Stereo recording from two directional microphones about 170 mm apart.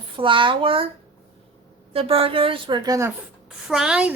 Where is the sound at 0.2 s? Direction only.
30° right (ahead or behind).